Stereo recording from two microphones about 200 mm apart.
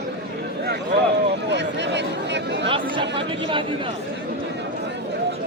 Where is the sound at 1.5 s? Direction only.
60° right (ahead or behind).